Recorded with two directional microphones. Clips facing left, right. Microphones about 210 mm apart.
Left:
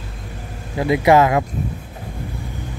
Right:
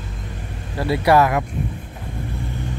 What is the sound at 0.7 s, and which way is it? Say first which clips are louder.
Speech: left 2 dB; 15° left (ahead or behind).